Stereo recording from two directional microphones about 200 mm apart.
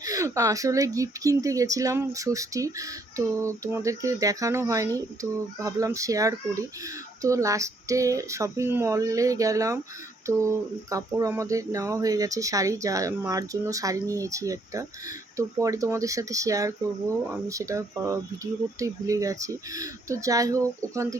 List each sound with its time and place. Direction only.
0.0 s speech: 15° right (ahead or behind)